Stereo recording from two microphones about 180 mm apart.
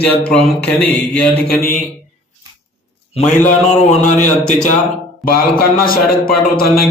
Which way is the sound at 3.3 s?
45° left (ahead or behind).